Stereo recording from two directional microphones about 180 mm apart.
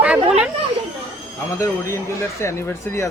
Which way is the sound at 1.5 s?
15° left (ahead or behind).